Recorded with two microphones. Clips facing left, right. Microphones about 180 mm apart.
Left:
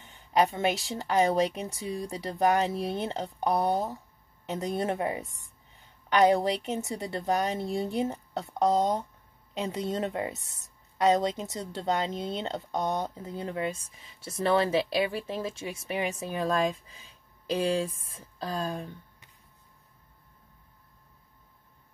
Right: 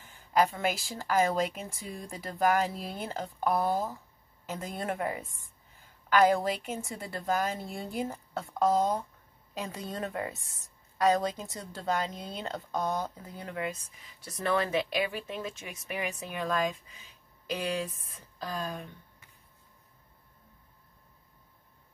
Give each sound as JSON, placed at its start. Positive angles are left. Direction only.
{"t": 0.0, "sound": "speech", "side_deg": 20}